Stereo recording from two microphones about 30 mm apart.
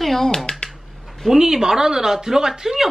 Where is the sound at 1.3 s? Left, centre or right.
Centre.